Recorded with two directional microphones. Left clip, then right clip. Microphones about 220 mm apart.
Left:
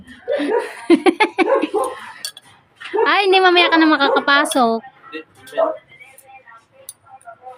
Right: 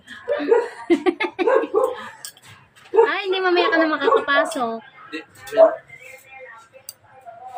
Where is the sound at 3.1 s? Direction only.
50° left (ahead or behind).